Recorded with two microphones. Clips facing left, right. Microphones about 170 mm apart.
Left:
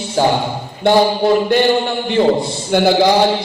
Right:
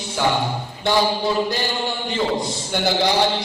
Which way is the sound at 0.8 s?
60° left (ahead or behind).